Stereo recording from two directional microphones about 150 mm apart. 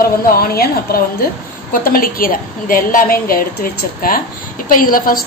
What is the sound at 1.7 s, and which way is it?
A woman's voice, 70° left (ahead or behind).